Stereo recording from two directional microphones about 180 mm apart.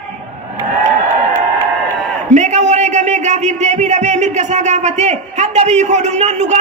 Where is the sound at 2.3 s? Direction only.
40° right (ahead or behind).